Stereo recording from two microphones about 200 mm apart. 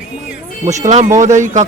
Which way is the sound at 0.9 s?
35° right (ahead or behind).